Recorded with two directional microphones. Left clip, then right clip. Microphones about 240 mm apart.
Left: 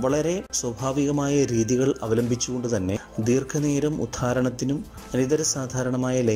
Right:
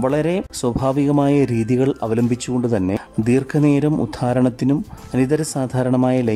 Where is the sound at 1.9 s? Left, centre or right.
Centre.